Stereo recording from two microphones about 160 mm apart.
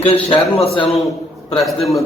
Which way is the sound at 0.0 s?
35° left (ahead or behind).